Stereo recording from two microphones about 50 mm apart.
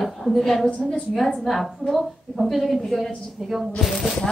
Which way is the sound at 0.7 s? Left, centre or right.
Left.